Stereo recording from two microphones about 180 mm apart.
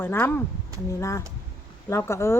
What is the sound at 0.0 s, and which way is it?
A woman's voice, 10° left (ahead or behind).